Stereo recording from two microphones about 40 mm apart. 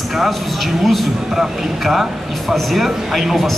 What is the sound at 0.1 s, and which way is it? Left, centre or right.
Speech, centre.